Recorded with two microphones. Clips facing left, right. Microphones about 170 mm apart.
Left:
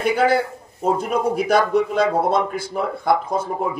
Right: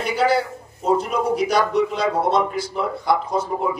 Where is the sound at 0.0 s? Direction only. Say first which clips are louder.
Left 2 dB; 55° left (ahead or behind).